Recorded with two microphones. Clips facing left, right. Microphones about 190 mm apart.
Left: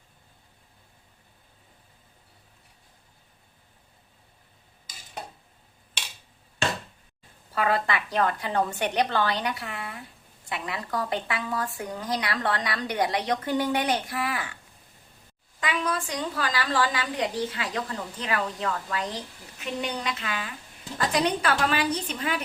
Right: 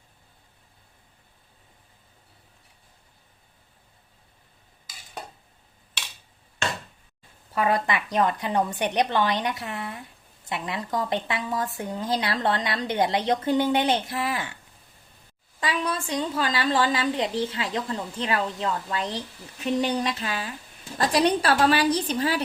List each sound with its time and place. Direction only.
7.5 s speech: 20° right (ahead or behind)
15.6 s a woman's voice: 30° right (ahead or behind)